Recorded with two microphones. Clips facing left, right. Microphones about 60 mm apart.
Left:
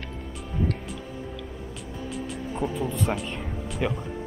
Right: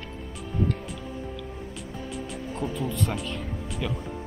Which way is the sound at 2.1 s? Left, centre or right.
Centre.